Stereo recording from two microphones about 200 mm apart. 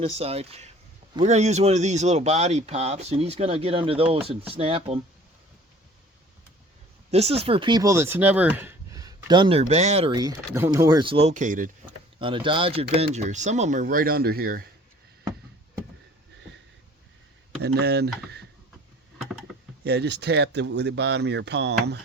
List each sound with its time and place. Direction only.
0.0 s speech: 30° right (ahead or behind)
7.1 s speech: 30° right (ahead or behind)
10.2 s speech: 15° right (ahead or behind); by 11.7 s 40° right (ahead or behind)
12.2 s speech: 25° right (ahead or behind); by 14.6 s 45° right (ahead or behind)
17.6 s speech: 55° right (ahead or behind)
19.8 s speech: 55° right (ahead or behind)